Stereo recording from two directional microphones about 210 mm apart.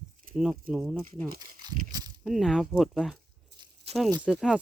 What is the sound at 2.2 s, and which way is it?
Speech, centre (ahead or behind).